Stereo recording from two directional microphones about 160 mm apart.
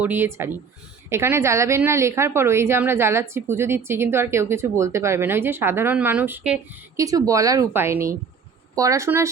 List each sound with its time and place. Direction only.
0.0 s a woman's voice: 15° right (ahead or behind)
6.9 s a woman's voice: 20° right (ahead or behind)